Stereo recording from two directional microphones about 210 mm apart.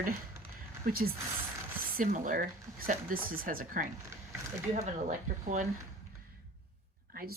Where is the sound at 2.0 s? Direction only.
40° right (ahead or behind).